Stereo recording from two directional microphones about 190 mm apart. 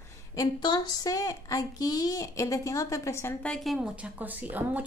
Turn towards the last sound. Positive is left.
turn(degrees=-10)  # may be behind; listen again after turning